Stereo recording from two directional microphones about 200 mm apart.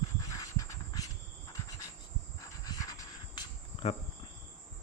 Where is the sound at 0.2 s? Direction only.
15° left (ahead or behind).